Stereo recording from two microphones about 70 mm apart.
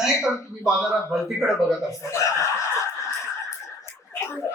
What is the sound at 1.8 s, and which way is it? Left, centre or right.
Speech, left.